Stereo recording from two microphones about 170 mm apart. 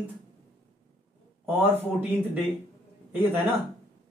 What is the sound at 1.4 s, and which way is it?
Speech, 10° right (ahead or behind).